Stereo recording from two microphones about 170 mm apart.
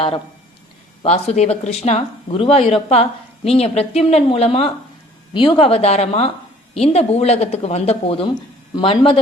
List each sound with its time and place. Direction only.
1.0 s speech: 40° left (ahead or behind)